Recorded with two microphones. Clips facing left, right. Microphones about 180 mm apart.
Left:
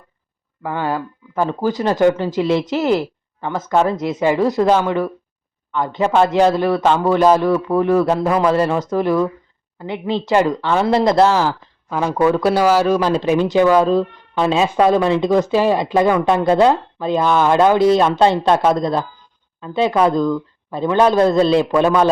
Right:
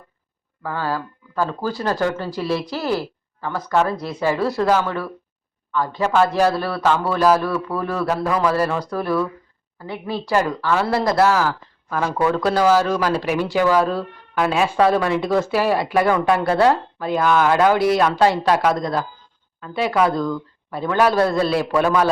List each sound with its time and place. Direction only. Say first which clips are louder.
0.6 s speech: left 3 dB; 20° left (ahead or behind)